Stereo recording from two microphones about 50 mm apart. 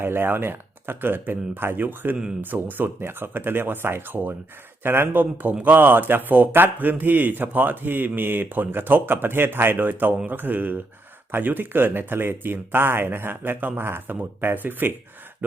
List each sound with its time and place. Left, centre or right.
0.0 s speech: right
13.8 s speech: right
14.2 s speech: right